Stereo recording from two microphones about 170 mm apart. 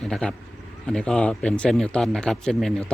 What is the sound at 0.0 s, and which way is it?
Speech, 5° left (ahead or behind).